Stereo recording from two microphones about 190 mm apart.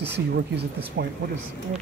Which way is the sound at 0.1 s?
60° right (ahead or behind).